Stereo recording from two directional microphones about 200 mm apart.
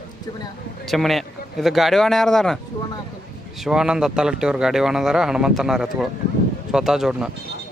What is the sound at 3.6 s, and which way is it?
Speech, 5° right (ahead or behind).